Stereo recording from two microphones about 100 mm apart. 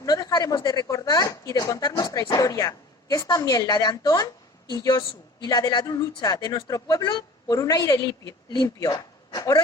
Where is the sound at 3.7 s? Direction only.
45° left (ahead or behind).